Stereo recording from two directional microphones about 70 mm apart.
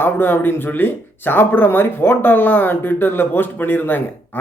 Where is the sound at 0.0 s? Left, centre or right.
Left.